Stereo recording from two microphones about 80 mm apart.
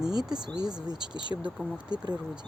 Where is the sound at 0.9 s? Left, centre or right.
Right.